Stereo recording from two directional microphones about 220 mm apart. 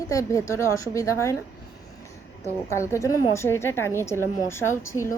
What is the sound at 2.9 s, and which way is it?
A woman's voice, 15° left (ahead or behind).